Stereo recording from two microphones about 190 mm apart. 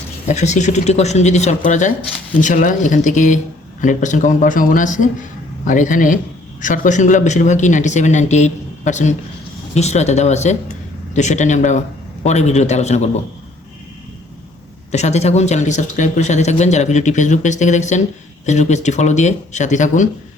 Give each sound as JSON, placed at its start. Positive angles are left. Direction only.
{"t": 0.3, "sound": "a man's voice", "side_deg": 40}
{"t": 14.9, "sound": "speech", "side_deg": 35}